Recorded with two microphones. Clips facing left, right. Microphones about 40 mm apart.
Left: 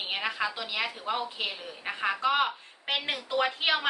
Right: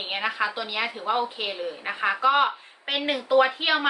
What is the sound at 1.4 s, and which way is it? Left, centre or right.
A woman's voice, centre.